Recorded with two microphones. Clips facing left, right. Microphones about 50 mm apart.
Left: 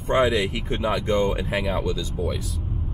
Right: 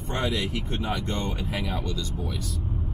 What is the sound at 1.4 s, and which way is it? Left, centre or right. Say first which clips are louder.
Speech: left 5 dB; left.